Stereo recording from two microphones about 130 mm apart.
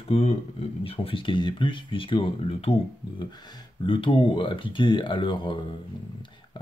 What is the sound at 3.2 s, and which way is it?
Speech, 35° left (ahead or behind).